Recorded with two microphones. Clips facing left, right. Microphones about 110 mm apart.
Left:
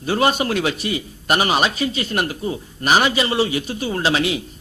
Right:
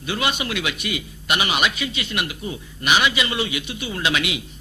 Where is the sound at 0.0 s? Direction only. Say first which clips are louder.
Left 6 dB; 40° left (ahead or behind).